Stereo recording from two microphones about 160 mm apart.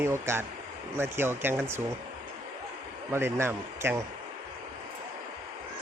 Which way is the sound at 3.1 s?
15° right (ahead or behind).